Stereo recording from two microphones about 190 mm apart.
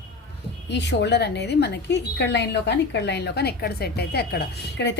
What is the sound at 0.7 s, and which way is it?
A woman's voice, 65° left (ahead or behind).